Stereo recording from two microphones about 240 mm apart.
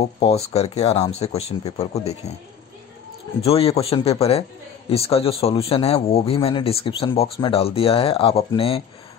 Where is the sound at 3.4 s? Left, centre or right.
Left.